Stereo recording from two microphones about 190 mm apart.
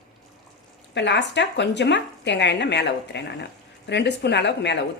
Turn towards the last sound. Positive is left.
turn(degrees=65)  # may be behind; listen again after turning